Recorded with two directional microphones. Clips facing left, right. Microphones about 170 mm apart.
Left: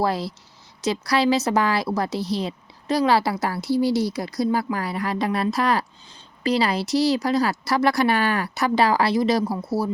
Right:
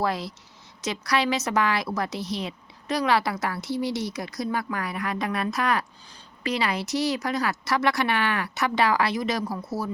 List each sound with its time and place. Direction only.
0.0 s a woman's voice: 35° left (ahead or behind)